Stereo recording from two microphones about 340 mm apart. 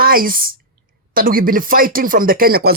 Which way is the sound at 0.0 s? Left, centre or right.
Right.